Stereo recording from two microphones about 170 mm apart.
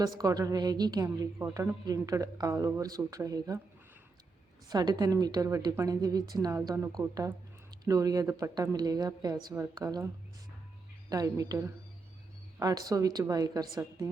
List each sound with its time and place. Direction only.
0.0 s a woman's voice: 20° right (ahead or behind)
4.7 s a woman's voice: 25° right (ahead or behind)
11.1 s a woman's voice: 20° right (ahead or behind)